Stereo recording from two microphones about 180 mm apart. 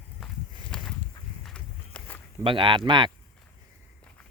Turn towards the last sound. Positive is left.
turn(degrees=-25)  # may be behind; listen again after turning